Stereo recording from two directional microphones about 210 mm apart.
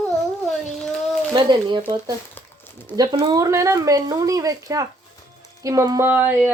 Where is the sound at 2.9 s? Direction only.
20° right (ahead or behind).